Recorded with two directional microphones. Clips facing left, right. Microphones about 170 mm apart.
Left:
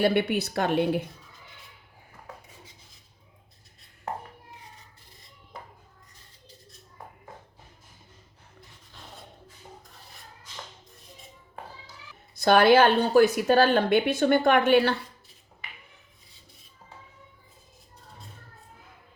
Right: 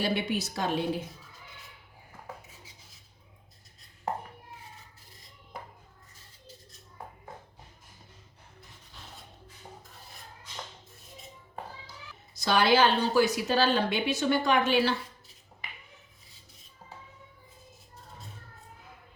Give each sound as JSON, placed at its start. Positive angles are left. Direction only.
{"t": 0.0, "sound": "a woman's voice", "side_deg": 60}
{"t": 12.3, "sound": "a woman's voice", "side_deg": 55}